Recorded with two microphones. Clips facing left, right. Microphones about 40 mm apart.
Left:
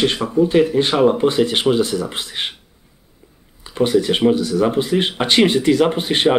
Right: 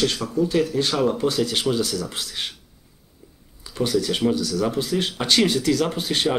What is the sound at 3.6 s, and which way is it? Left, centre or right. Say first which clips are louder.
Speech: left 6 dB; left.